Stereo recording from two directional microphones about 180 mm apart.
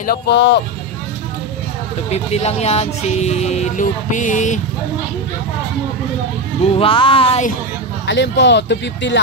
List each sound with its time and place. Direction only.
0.0 s speech: 60° left (ahead or behind)
2.0 s speech: 35° left (ahead or behind)
6.6 s speech: 30° left (ahead or behind)
8.1 s speech: 75° left (ahead or behind)